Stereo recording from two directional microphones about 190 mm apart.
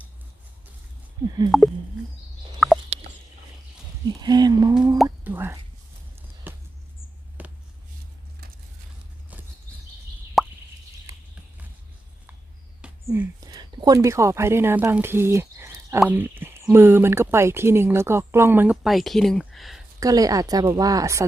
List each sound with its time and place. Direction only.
1.5 s speech: centre (ahead or behind)
2.6 s fowl: centre (ahead or behind)
4.2 s a woman's voice: 20° right (ahead or behind)
5.0 s plop: 10° right (ahead or behind)
6.5 s a sound: 10° right (ahead or behind)
10.4 s plop: centre (ahead or behind)
13.1 s speech: 15° right (ahead or behind); by 19.8 s centre (ahead or behind)
20.0 s a woman's voice: 20° right (ahead or behind)